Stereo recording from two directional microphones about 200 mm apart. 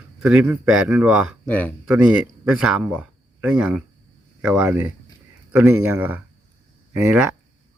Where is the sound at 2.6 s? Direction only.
5° right (ahead or behind).